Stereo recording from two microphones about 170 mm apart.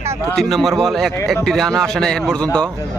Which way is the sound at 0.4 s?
Centre (ahead or behind).